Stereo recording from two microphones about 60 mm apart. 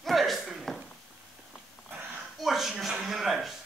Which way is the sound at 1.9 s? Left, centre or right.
Right.